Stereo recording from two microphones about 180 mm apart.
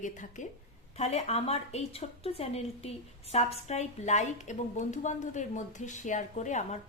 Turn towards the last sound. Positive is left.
turn(degrees=40)  # may be behind; listen again after turning